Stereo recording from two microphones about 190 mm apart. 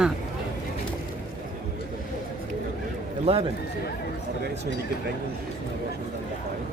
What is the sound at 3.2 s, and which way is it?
Speech, 30° right (ahead or behind).